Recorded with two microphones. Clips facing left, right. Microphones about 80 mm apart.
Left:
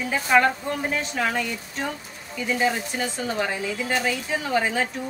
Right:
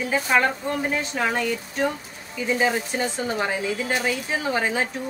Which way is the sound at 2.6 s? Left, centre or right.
Right.